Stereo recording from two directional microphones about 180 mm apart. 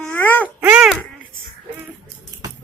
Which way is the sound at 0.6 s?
5° right (ahead or behind).